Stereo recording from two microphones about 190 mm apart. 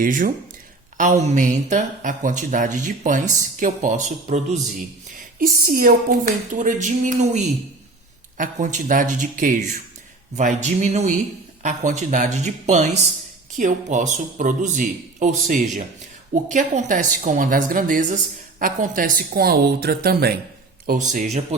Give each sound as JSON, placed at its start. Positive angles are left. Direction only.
{"t": 0.0, "sound": "a woman's voice", "side_deg": -45}
{"t": 5.1, "sound": "a woman's voice", "side_deg": -50}
{"t": 20.8, "sound": "a woman's voice", "side_deg": -45}